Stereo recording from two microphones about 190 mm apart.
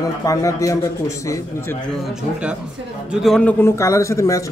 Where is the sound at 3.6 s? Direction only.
15° left (ahead or behind).